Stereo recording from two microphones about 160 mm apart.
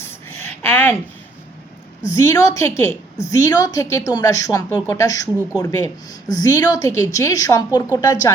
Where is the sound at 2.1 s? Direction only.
20° left (ahead or behind).